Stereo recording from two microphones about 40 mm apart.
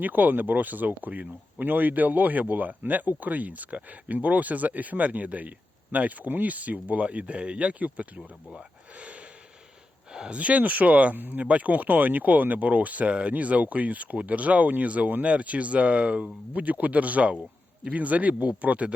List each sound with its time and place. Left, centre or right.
0.0 s speech: right
8.5 s a sound: right
10.3 s speech: right
11.2 s speech: right
11.4 s speech: right